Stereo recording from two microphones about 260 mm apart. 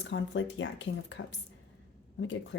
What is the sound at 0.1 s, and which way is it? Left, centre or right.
Speech, left.